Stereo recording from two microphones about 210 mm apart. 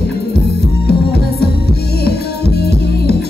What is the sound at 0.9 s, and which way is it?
Music, 50° left (ahead or behind).